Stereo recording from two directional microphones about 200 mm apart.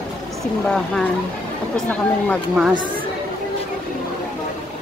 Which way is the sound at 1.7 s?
5° left (ahead or behind).